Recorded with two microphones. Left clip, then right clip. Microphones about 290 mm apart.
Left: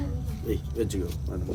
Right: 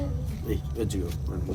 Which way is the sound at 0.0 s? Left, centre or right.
Centre.